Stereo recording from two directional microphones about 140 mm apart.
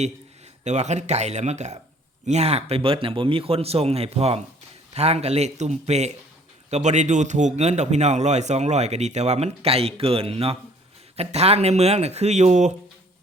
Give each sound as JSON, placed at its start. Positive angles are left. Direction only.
{"t": 0.6, "sound": "speech", "side_deg": -55}